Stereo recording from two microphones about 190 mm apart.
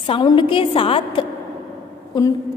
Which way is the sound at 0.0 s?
25° left (ahead or behind).